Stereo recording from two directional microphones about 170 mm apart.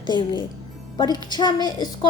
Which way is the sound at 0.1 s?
25° left (ahead or behind).